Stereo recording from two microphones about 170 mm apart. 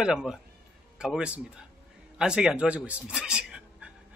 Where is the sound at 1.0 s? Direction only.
5° right (ahead or behind).